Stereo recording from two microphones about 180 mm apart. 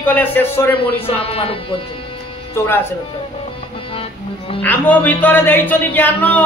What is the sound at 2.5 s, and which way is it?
Speech, 10° left (ahead or behind).